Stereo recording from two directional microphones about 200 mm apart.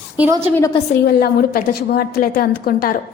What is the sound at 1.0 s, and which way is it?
A woman's voice, 50° left (ahead or behind).